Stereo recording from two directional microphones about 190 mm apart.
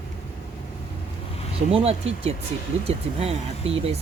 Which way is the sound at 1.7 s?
30° right (ahead or behind).